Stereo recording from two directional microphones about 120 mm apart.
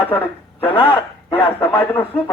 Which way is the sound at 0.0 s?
15° left (ahead or behind).